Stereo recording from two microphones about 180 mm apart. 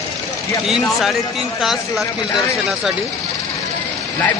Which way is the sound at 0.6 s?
Centre (ahead or behind).